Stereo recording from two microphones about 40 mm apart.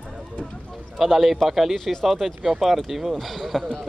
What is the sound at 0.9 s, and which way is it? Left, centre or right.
Speech, centre.